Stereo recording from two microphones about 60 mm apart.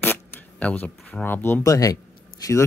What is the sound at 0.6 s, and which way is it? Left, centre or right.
Speech, left.